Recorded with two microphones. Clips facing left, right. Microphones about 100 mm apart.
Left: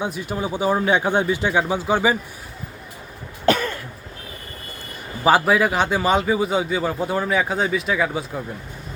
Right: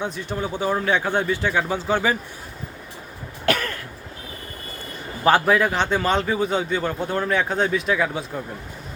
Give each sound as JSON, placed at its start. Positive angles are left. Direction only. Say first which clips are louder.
{"t": 0.0, "sound": "speech", "louder": "left 2 dB", "side_deg": 10}
{"t": 3.4, "sound": "cough", "louder": "left 4 dB", "side_deg": 20}
{"t": 5.2, "sound": "a man's voice", "louder": "left 1 dB", "side_deg": 5}